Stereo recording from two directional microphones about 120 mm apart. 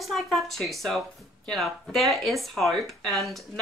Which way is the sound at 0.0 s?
Centre (ahead or behind).